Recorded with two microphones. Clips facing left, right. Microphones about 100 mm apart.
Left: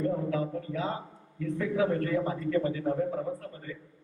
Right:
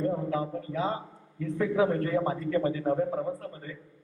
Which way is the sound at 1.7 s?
30° right (ahead or behind).